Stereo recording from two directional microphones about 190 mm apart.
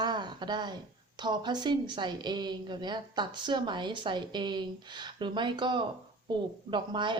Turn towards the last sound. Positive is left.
turn(degrees=-25)  # may be behind; listen again after turning